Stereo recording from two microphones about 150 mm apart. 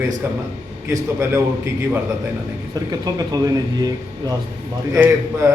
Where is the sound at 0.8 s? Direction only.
20° right (ahead or behind).